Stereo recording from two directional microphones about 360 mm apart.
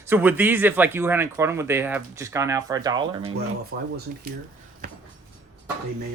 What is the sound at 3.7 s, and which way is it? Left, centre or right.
Speech, right.